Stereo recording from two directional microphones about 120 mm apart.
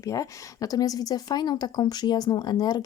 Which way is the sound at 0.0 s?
25° left (ahead or behind).